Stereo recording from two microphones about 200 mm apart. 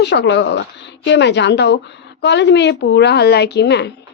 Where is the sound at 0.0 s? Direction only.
60° left (ahead or behind).